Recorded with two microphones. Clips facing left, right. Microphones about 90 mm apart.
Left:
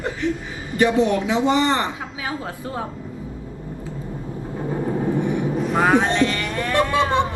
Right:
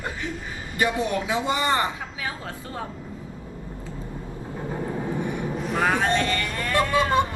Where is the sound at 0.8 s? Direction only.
20° left (ahead or behind).